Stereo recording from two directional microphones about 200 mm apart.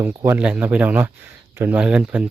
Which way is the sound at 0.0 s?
10° right (ahead or behind).